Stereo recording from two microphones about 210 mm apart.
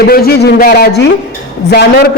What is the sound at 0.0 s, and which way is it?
A man's voice, 45° left (ahead or behind).